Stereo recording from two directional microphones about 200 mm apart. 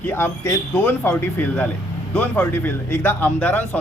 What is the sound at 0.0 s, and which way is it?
Speech, 10° left (ahead or behind).